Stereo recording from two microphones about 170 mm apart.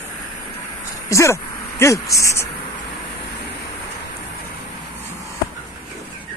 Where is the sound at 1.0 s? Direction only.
15° left (ahead or behind).